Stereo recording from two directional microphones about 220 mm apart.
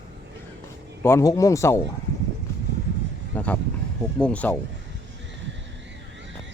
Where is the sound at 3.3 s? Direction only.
10° left (ahead or behind).